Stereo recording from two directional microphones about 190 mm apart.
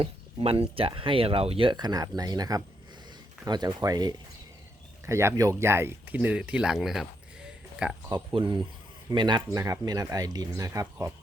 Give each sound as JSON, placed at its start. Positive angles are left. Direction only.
{"t": 0.0, "sound": "speech", "side_deg": -30}
{"t": 8.1, "sound": "speech", "side_deg": -25}